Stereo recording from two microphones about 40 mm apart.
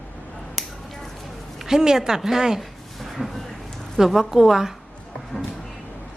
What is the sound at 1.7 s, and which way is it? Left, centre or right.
Speech, centre.